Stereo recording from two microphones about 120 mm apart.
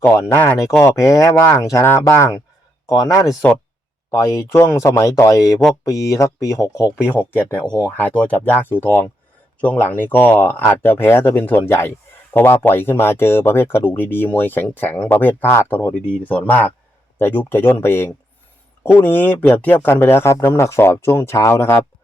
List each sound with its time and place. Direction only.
0.0 s speech: 20° left (ahead or behind)
7.8 s speech: 10° left (ahead or behind)